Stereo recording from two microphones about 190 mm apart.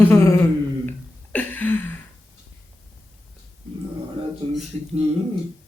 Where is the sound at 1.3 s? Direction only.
10° left (ahead or behind).